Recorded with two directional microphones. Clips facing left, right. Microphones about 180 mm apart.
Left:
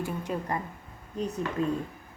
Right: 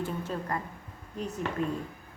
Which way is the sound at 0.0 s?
15° left (ahead or behind).